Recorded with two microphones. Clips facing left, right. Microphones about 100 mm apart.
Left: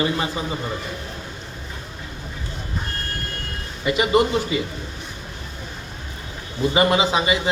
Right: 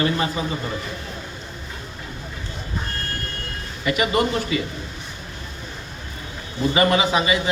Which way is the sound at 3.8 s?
25° left (ahead or behind).